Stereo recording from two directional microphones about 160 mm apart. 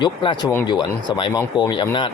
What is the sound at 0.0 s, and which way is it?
A man's voice, 30° left (ahead or behind).